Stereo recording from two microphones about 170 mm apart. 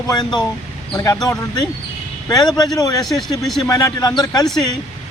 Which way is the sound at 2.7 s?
20° left (ahead or behind).